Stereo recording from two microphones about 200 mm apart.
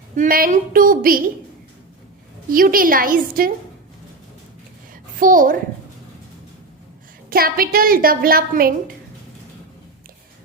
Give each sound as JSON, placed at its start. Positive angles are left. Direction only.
{"t": 0.2, "sound": "a woman's voice", "side_deg": -45}
{"t": 2.5, "sound": "a woman's voice", "side_deg": -45}
{"t": 5.2, "sound": "a woman's voice", "side_deg": -40}
{"t": 7.3, "sound": "a woman's voice", "side_deg": -50}